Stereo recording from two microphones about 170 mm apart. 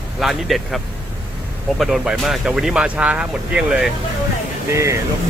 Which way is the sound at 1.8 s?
Centre (ahead or behind).